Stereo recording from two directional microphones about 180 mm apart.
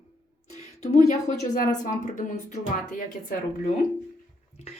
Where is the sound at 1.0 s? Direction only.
40° left (ahead or behind).